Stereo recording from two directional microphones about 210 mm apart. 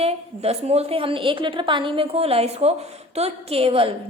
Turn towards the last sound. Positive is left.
turn(degrees=-25)  # may be behind; listen again after turning